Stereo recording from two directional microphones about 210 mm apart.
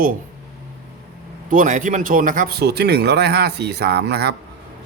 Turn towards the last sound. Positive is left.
turn(degrees=-50)  # may be behind; listen again after turning